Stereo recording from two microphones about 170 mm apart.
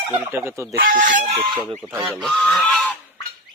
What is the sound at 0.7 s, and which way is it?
Speech, 55° right (ahead or behind).